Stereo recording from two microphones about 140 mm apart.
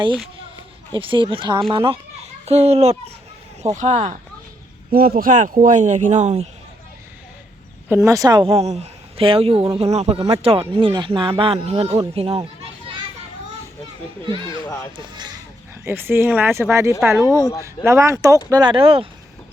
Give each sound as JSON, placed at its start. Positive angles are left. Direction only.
{"t": 0.9, "sound": "speech", "side_deg": -35}
{"t": 3.6, "sound": "speech", "side_deg": -60}
{"t": 4.9, "sound": "speech", "side_deg": -90}
{"t": 7.9, "sound": "speech", "side_deg": -20}
{"t": 8.6, "sound": "speech", "side_deg": -50}
{"t": 14.3, "sound": "speech", "side_deg": -35}
{"t": 14.6, "sound": "speech", "side_deg": 30}
{"t": 15.8, "sound": "speech", "side_deg": -15}
{"t": 17.0, "sound": "speech", "side_deg": -10}
{"t": 17.8, "sound": "speech", "side_deg": -20}
{"t": 18.5, "sound": "speech", "side_deg": -35}